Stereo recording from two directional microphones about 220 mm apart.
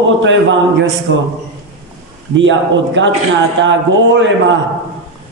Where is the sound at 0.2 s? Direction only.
55° right (ahead or behind).